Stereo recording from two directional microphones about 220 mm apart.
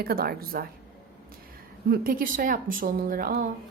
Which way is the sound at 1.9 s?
40° right (ahead or behind).